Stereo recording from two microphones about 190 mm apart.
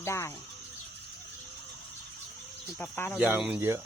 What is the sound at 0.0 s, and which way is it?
Speech, 15° left (ahead or behind).